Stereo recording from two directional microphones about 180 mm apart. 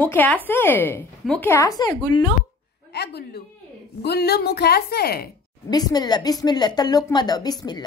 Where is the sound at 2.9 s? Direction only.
65° left (ahead or behind).